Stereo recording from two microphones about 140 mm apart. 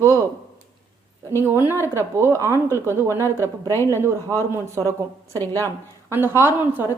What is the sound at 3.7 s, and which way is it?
Speech, 20° left (ahead or behind).